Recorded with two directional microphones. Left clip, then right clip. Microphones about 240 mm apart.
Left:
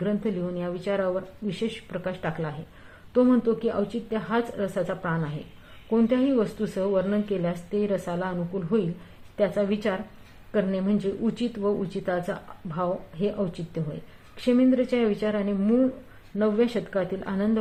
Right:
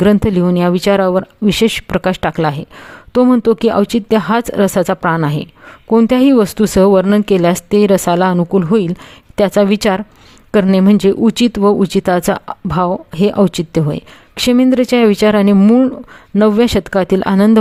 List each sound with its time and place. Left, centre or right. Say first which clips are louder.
0.0 s speech: right 16 dB; right